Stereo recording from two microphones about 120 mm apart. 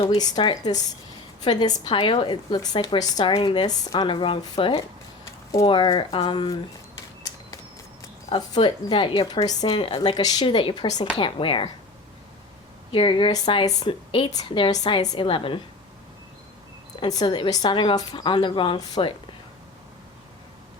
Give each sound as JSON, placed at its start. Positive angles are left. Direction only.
{"t": 0.2, "sound": "a woman's voice", "side_deg": 40}
{"t": 5.2, "sound": "a sound", "side_deg": 25}
{"t": 5.6, "sound": "a woman's voice", "side_deg": 40}
{"t": 8.4, "sound": "a woman's voice", "side_deg": 40}
{"t": 12.9, "sound": "a woman's voice", "side_deg": 45}
{"t": 14.3, "sound": "a woman's voice", "side_deg": 30}
{"t": 17.1, "sound": "a woman's voice", "side_deg": 35}